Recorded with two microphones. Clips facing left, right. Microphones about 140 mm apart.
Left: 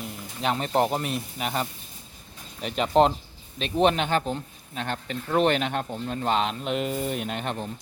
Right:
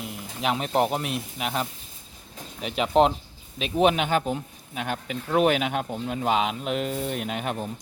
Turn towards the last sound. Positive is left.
turn(degrees=-10)  # may be behind; listen again after turning